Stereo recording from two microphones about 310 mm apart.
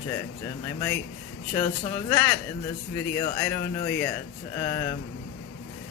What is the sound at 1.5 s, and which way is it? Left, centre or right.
Speech, centre.